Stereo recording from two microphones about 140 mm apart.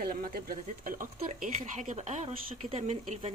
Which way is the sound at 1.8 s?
55° right (ahead or behind).